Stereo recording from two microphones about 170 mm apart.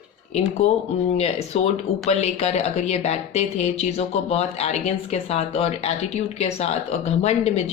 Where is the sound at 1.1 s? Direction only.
40° left (ahead or behind).